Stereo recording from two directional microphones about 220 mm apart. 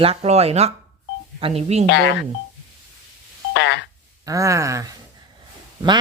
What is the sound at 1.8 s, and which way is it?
Speech, 55° left (ahead or behind).